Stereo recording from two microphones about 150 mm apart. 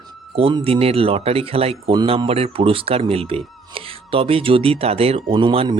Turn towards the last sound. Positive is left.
turn(degrees=-35)  # may be behind; listen again after turning